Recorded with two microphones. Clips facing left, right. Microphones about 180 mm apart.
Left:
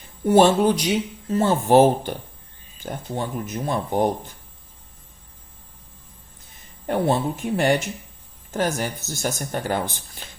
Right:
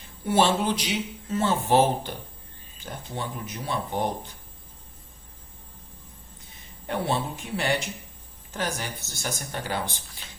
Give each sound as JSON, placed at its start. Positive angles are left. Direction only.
{"t": 0.3, "sound": "speech", "side_deg": 45}
{"t": 6.8, "sound": "speech", "side_deg": 45}